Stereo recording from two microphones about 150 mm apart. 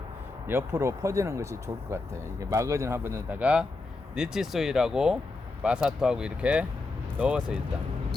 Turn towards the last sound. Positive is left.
turn(degrees=-10)  # may be behind; listen again after turning